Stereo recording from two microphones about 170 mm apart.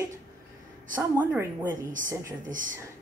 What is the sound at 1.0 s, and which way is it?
Speech, 10° right (ahead or behind).